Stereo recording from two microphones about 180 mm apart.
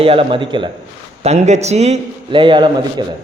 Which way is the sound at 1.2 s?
40° right (ahead or behind).